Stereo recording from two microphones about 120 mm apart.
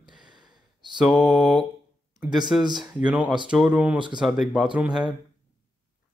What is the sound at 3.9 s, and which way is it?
Speech, 40° right (ahead or behind).